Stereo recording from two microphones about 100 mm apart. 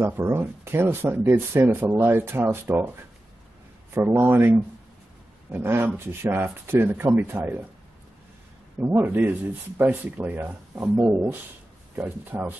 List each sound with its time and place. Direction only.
0.0 s speech: 20° right (ahead or behind)
3.9 s speech: 25° right (ahead or behind)
8.7 s speech: 20° right (ahead or behind)